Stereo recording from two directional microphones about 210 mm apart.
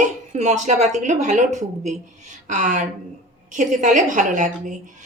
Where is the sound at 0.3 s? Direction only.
35° right (ahead or behind).